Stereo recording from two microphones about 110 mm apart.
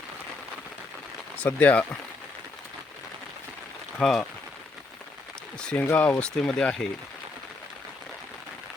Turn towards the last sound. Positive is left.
turn(degrees=5)  # may be behind; listen again after turning